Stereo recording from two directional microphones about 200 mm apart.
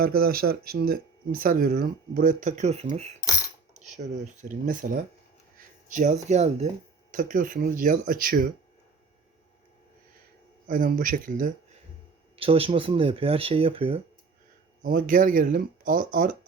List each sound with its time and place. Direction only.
0.0 s speech: 50° right (ahead or behind)
10.7 s speech: 45° right (ahead or behind)
12.4 s speech: 30° right (ahead or behind)
14.8 s speech: 45° right (ahead or behind)